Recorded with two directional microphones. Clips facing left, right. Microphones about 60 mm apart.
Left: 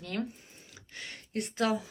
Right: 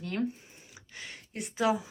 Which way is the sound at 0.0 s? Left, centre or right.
Right.